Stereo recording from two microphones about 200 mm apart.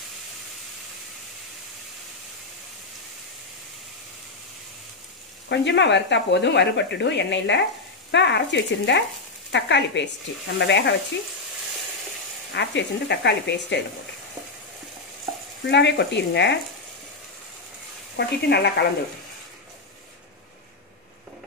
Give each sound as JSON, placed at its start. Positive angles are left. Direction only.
{"t": 5.5, "sound": "speech", "side_deg": 60}
{"t": 12.5, "sound": "speech", "side_deg": 60}
{"t": 15.7, "sound": "speech", "side_deg": 60}
{"t": 18.1, "sound": "speech", "side_deg": 55}